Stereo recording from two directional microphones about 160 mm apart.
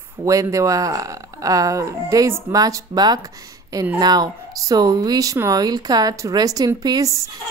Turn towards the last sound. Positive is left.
turn(degrees=-20)  # may be behind; listen again after turning